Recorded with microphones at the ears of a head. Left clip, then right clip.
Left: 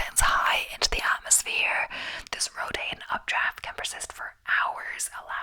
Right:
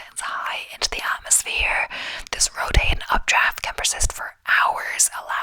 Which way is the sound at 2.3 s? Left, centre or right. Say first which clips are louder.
Right 9 dB; right.